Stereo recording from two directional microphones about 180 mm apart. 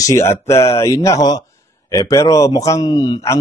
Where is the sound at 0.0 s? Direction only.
15° left (ahead or behind).